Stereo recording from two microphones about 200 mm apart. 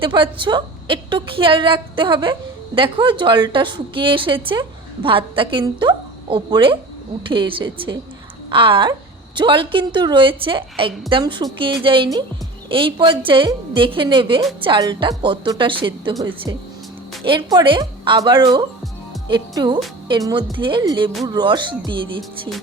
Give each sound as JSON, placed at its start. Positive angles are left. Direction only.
{"t": 0.0, "sound": "a woman's voice", "side_deg": -25}
{"t": 17.2, "sound": "a woman's voice", "side_deg": -25}